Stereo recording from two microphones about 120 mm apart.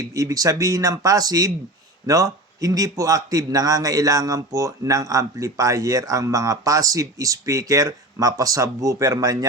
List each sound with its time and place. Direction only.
0.0 s a man's voice: 25° right (ahead or behind)